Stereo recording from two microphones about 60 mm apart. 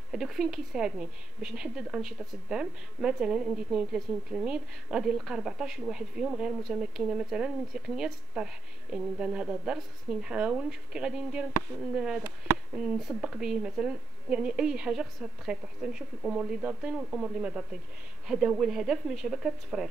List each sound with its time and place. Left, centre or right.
0.1 s speech: centre
13.2 s speech: centre